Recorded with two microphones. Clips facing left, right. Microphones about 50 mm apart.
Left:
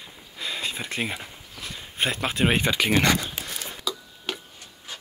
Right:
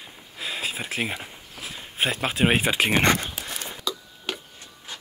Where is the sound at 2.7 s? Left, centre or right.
Right.